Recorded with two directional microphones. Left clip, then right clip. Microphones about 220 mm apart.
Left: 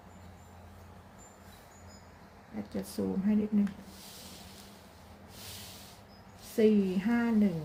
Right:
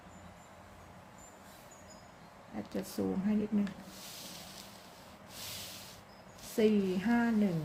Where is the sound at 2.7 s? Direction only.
Centre (ahead or behind).